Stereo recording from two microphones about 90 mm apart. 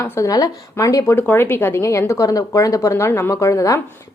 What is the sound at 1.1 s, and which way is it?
A woman's voice, 25° left (ahead or behind).